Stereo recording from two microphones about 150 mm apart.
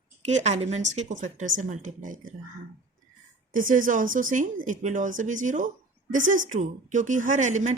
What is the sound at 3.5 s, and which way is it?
Speech, 65° right (ahead or behind).